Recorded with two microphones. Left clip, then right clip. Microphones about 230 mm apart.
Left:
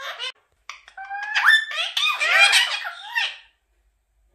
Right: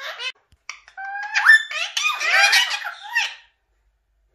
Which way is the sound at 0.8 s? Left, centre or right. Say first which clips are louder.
Right 1 dB; centre.